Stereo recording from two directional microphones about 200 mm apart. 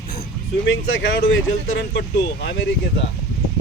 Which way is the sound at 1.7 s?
60° left (ahead or behind).